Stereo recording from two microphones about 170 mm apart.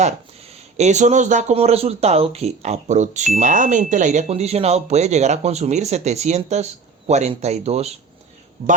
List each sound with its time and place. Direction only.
0.8 s speech: 45° right (ahead or behind)